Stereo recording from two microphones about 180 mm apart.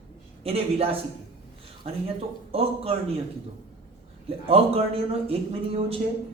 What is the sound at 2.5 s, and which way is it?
Speech, 35° right (ahead or behind).